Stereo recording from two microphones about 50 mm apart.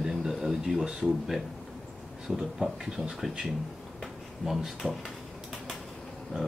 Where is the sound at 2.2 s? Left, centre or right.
Centre.